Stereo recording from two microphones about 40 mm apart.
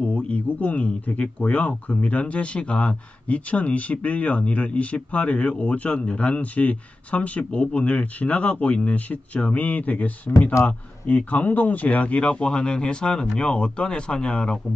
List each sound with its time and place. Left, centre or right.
0.0 s a man's voice: left